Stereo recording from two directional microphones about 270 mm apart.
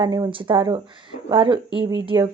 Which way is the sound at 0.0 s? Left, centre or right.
Centre.